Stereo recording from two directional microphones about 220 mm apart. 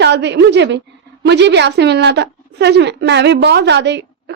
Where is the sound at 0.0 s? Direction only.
50° right (ahead or behind).